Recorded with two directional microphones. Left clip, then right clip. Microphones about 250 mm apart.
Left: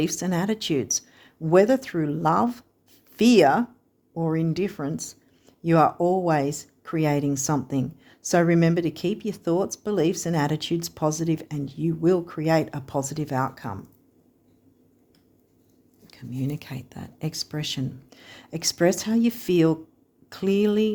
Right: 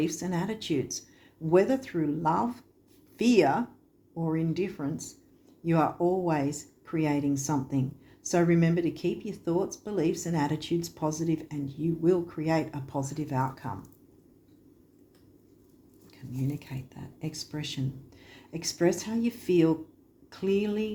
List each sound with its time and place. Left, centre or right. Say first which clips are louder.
0.0 s speech: left 5 dB; left
16.0 s speech: left 4 dB; left